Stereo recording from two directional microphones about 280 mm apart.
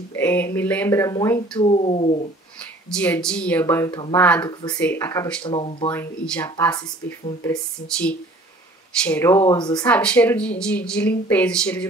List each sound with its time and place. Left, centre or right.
0.1 s speech: centre
1.7 s speech: left
2.9 s speech: centre
5.9 s speech: centre
9.0 s speech: centre